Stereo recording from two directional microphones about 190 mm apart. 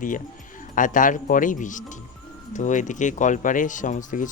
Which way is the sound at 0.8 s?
45° left (ahead or behind).